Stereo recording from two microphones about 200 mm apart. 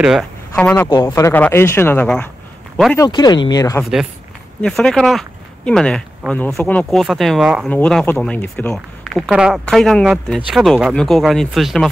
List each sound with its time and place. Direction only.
0.0 s speech: centre (ahead or behind)
3.0 s speech: 20° left (ahead or behind)
4.6 s speech: 5° left (ahead or behind)
7.7 s speech: 5° left (ahead or behind)